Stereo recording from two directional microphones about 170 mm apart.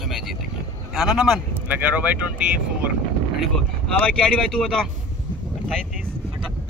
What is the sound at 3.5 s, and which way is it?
Speech, 5° left (ahead or behind).